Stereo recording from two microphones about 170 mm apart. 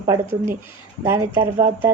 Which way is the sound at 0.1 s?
15° right (ahead or behind).